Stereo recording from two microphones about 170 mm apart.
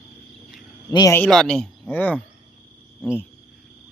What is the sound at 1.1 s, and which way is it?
Speech, 5° left (ahead or behind).